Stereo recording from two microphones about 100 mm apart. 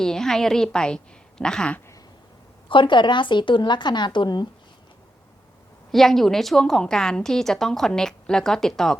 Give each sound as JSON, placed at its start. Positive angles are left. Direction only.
{"t": 0.0, "sound": "a woman's voice", "side_deg": 5}
{"t": 2.6, "sound": "speech", "side_deg": 55}
{"t": 5.9, "sound": "a woman's voice", "side_deg": 5}